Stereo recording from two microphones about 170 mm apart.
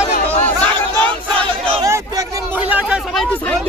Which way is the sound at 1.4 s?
30° right (ahead or behind).